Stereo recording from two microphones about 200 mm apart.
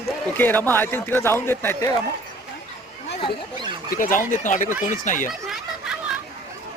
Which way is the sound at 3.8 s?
45° left (ahead or behind).